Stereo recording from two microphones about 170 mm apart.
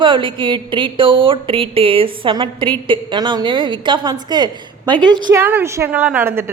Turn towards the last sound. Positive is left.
turn(degrees=-15)  # may be behind; listen again after turning